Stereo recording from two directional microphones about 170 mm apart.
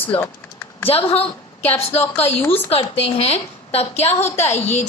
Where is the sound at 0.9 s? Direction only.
35° left (ahead or behind).